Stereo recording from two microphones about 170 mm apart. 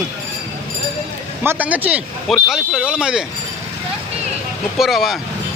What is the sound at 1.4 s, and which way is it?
Speech, 10° right (ahead or behind).